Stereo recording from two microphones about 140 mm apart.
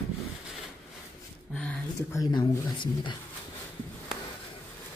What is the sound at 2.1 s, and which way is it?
Speech, 35° left (ahead or behind).